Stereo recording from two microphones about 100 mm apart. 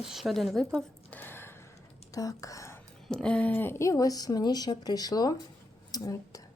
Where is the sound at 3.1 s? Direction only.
10° left (ahead or behind); by 6.4 s 35° left (ahead or behind).